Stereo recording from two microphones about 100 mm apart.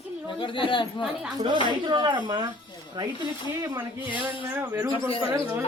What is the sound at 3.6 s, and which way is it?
A woman's voice, 20° right (ahead or behind).